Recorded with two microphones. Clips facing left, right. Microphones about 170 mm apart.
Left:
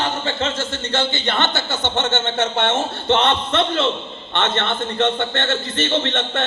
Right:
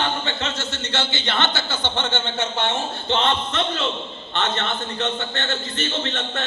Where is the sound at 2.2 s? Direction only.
75° left (ahead or behind).